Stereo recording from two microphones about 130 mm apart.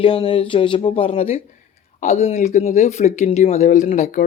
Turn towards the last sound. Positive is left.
turn(degrees=80)